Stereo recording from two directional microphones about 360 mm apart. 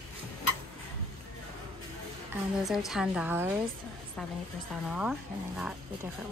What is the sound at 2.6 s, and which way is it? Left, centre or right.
Speech, centre.